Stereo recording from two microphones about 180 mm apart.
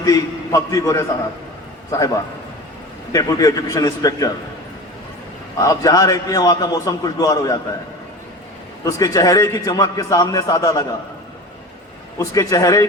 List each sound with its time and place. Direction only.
0.0 s a man's voice: 20° left (ahead or behind)
5.5 s a man's voice: 20° left (ahead or behind)
8.8 s a man's voice: 20° left (ahead or behind)
12.2 s a man's voice: 20° left (ahead or behind)